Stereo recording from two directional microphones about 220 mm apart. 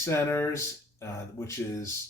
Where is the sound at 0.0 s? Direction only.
10° left (ahead or behind).